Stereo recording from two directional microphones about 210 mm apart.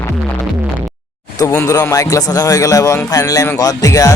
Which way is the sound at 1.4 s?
15° left (ahead or behind).